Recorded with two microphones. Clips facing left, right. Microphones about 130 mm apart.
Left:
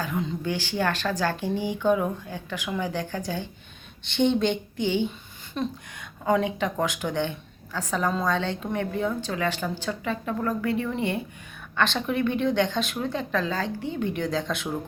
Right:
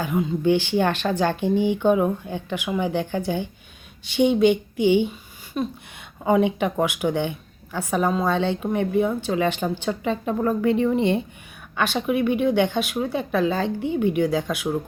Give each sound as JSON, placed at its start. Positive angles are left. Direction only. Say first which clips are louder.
{"t": 0.0, "sound": "a woman's voice", "louder": "right 7 dB", "side_deg": -20}
{"t": 11.8, "sound": "a woman's voice", "louder": "right 3 dB", "side_deg": -10}